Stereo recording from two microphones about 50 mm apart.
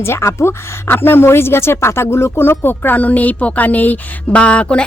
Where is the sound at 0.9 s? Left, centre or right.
Left.